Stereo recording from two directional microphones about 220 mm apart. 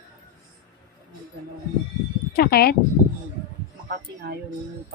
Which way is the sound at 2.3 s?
45° left (ahead or behind).